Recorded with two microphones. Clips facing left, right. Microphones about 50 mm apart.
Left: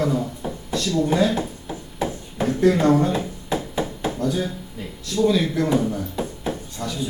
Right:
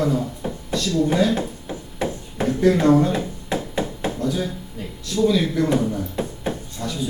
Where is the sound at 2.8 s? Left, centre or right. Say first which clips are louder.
Right 2 dB; left.